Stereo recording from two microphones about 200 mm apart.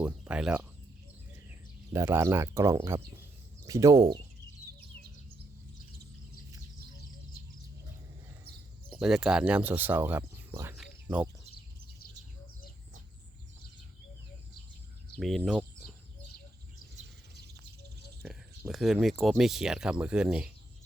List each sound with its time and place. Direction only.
0.0 s speech: 5° right (ahead or behind)
1.9 s speech: 15° right (ahead or behind)
8.9 s speech: 5° right (ahead or behind)
10.8 s a sound: 5° right (ahead or behind)
15.2 s speech: centre (ahead or behind)
18.2 s a sound: 10° right (ahead or behind)
18.7 s speech: centre (ahead or behind)